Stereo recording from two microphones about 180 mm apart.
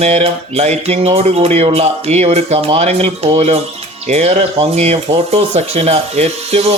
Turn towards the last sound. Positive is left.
turn(degrees=-35)  # may be behind; listen again after turning